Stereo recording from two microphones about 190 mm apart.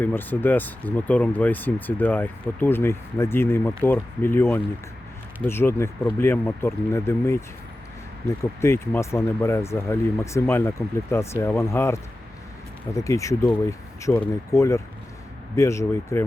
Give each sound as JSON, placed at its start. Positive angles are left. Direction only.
{"t": 0.0, "sound": "speech", "side_deg": 10}
{"t": 8.6, "sound": "speech", "side_deg": 15}